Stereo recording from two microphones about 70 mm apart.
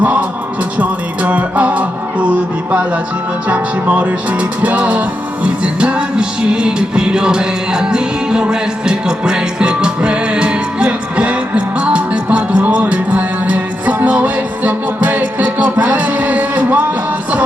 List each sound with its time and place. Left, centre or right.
0.0 s music: right